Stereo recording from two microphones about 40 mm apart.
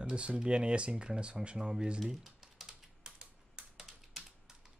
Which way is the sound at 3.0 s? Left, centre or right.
Centre.